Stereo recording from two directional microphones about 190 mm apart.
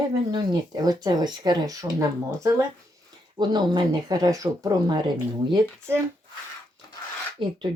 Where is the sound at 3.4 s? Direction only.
20° right (ahead or behind).